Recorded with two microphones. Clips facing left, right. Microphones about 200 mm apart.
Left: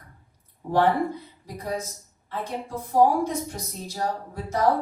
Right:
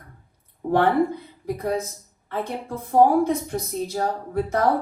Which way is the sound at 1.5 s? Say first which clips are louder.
Right 3 dB; 60° right (ahead or behind).